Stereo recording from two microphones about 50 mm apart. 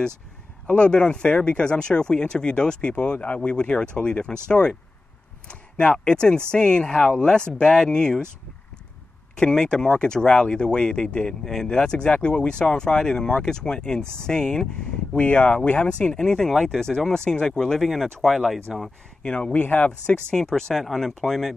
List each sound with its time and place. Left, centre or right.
0.7 s speech: centre
9.4 s speech: centre
15.1 s speech: left; by 18.4 s centre
18.7 s speech: centre
19.2 s speech: left
19.5 s speech: left
20.2 s speech: centre